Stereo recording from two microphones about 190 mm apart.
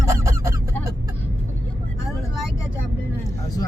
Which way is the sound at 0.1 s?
15° right (ahead or behind).